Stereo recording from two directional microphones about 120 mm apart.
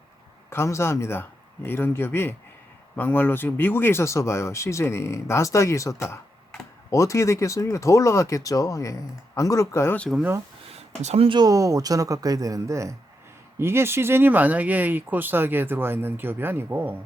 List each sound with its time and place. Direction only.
0.5 s speech: 20° left (ahead or behind)
11.0 s speech: 60° right (ahead or behind)
11.3 s speech: 35° right (ahead or behind); by 17.0 s 15° right (ahead or behind)